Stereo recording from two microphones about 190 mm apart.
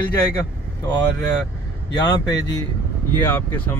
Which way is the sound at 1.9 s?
20° left (ahead or behind).